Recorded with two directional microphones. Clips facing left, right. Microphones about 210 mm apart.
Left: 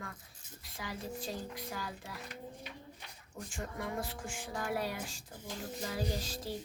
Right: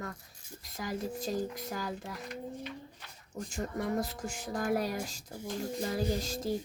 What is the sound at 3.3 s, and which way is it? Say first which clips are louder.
Speech: right 6 dB; 40° right (ahead or behind).